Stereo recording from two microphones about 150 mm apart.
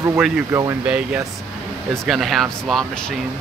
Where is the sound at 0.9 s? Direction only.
10° right (ahead or behind).